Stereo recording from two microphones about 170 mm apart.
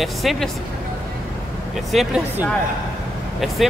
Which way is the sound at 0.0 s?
Centre (ahead or behind).